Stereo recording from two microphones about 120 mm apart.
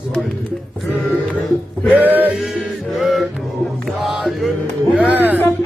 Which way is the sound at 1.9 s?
15° right (ahead or behind).